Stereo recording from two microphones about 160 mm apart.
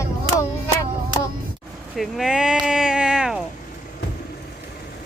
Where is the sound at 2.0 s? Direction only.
Centre (ahead or behind).